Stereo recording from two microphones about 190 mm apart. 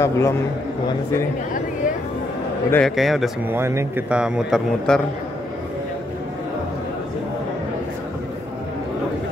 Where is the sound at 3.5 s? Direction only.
15° right (ahead or behind).